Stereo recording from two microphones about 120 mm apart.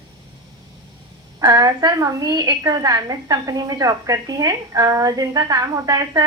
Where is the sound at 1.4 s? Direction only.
30° right (ahead or behind).